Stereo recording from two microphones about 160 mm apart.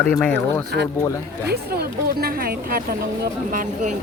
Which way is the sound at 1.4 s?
80° right.